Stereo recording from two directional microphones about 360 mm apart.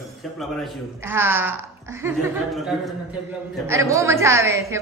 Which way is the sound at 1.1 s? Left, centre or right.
Centre.